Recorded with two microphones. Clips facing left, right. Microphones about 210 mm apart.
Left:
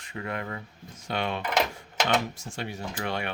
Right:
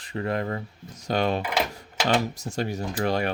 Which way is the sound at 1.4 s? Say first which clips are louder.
Even; 5° right (ahead or behind).